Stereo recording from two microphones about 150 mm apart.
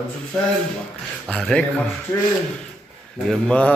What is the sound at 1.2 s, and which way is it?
Speech, 5° left (ahead or behind).